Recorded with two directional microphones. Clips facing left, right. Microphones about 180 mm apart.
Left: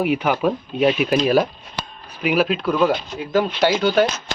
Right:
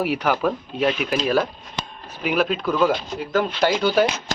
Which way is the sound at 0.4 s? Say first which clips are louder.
Left 3 dB; 20° left (ahead or behind).